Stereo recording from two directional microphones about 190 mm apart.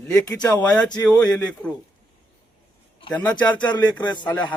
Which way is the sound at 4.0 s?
25° left (ahead or behind).